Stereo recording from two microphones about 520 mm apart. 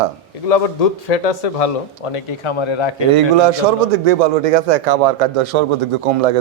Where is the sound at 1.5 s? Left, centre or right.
Left.